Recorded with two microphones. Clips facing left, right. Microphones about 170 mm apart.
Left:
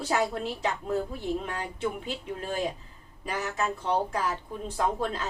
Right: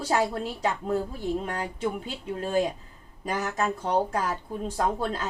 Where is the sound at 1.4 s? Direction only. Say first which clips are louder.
Right 2 dB; 40° right (ahead or behind).